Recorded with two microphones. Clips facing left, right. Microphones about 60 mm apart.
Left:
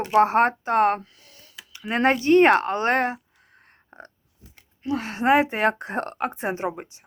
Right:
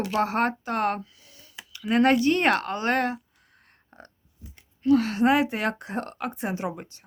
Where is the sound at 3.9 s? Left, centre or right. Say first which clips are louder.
Left 4 dB; left.